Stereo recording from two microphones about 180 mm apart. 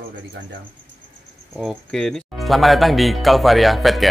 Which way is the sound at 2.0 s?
Centre (ahead or behind).